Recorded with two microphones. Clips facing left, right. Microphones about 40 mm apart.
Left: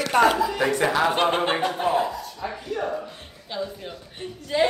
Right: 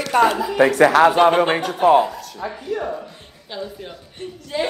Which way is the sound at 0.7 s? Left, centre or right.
Right.